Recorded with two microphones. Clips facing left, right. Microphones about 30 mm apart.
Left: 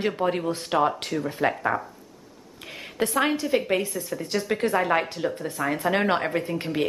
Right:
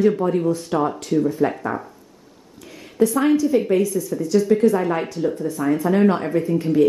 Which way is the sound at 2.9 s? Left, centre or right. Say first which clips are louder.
Right 7 dB; left.